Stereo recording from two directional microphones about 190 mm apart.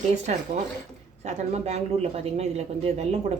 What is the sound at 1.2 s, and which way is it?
A man's voice, 35° right (ahead or behind).